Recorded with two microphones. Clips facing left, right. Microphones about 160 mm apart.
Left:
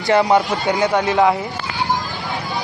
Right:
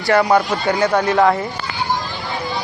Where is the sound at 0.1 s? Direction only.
20° left (ahead or behind).